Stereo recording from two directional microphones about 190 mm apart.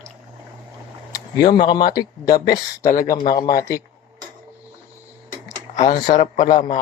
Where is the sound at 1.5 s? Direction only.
25° left (ahead or behind).